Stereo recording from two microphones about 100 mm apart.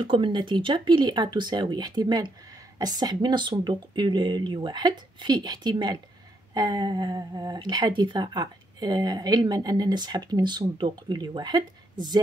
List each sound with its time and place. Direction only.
0.0 s speech: 55° right (ahead or behind)